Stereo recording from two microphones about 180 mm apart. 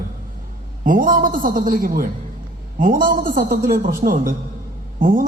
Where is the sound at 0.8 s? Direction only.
50° right (ahead or behind).